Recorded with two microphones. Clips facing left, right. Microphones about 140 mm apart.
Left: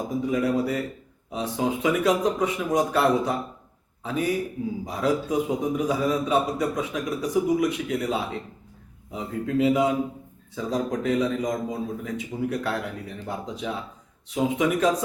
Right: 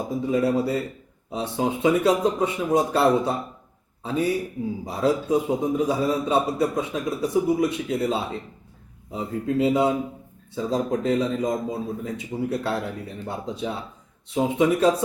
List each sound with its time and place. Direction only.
0.2 s a man's voice: 30° right (ahead or behind)